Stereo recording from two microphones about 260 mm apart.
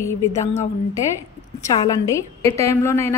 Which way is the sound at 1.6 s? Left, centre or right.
Centre.